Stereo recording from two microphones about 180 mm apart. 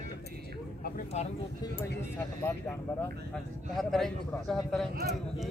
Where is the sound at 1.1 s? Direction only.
40° left (ahead or behind).